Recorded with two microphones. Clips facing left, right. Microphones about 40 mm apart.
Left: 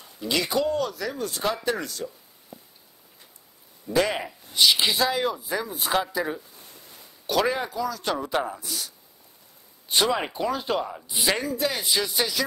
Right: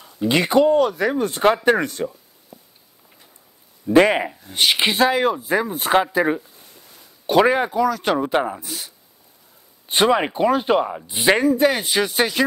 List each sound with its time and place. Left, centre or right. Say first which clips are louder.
0.0 s speech: right 7 dB; right
3.9 s speech: right 9 dB; right